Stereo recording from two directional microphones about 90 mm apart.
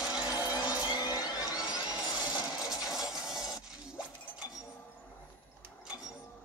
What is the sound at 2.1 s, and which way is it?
Coin, 50° left (ahead or behind).